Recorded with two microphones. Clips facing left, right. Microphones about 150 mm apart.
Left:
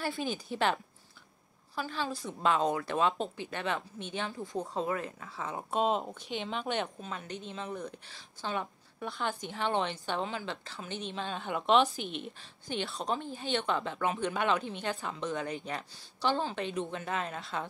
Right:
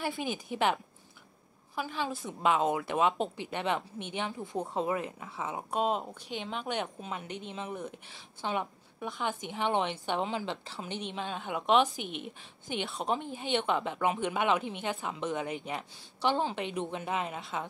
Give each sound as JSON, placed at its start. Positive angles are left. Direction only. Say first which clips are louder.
{"t": 0.2, "sound": "a woman's voice", "louder": "right 1 dB", "side_deg": -15}
{"t": 1.8, "sound": "a woman's voice", "louder": "right 1 dB", "side_deg": -15}
{"t": 5.6, "sound": "a woman's voice", "louder": "left 1 dB", "side_deg": -5}